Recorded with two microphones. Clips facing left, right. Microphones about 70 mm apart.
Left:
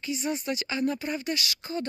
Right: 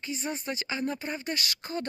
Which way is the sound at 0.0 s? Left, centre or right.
Right.